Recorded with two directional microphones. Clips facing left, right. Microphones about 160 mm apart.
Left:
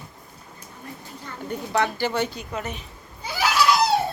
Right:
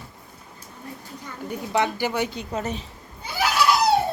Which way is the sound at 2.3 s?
35° right (ahead or behind).